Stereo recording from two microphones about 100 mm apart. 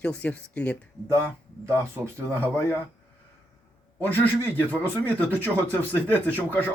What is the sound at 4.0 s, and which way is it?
Speech, 20° left (ahead or behind).